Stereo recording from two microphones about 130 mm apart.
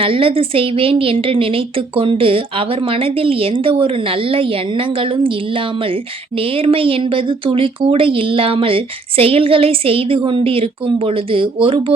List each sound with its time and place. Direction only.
0.0 s a woman's voice: 45° right (ahead or behind)